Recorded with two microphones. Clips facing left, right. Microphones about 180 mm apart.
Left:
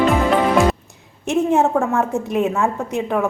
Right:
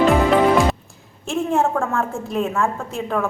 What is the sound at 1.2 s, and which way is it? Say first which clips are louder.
A woman's voice: left 3 dB; 20° left (ahead or behind).